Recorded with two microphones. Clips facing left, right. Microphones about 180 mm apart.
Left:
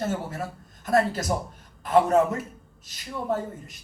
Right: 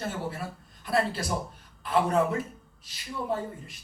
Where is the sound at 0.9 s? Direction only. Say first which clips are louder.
Left 4 dB; 45° left (ahead or behind).